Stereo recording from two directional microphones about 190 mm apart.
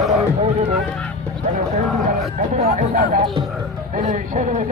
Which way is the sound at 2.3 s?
35° right (ahead or behind).